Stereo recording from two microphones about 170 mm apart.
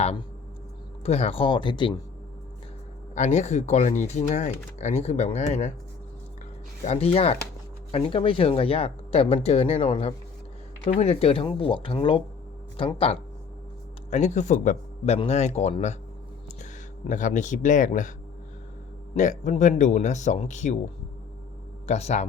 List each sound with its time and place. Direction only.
1.0 s speech: 35° left (ahead or behind)
3.2 s speech: 45° left (ahead or behind)
6.8 s speech: 35° left (ahead or behind)
14.1 s speech: 45° left (ahead or behind)
19.1 s speech: 45° left (ahead or behind)
21.8 s speech: 40° left (ahead or behind)